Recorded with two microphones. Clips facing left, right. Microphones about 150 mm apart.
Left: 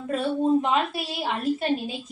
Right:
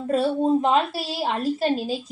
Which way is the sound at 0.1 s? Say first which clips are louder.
Right 2 dB; 30° right (ahead or behind).